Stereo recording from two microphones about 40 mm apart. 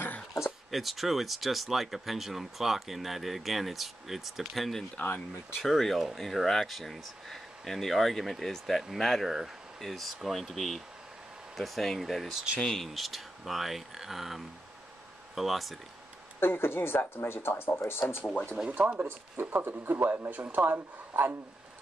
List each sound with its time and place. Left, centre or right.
0.7 s speech: centre
5.0 s speech: left
5.6 s speech: centre
12.5 s speech: centre
12.8 s speech: centre
16.3 s speech: left
18.3 s speech: left
18.8 s speech: right
19.4 s speech: right
20.0 s speech: right